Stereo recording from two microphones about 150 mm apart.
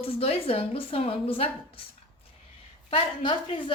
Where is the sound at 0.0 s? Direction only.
40° left (ahead or behind).